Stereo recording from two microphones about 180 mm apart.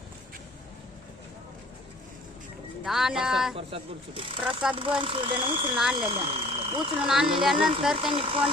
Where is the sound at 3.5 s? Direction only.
30° right (ahead or behind).